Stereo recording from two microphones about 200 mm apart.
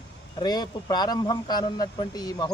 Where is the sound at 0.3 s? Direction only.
20° left (ahead or behind).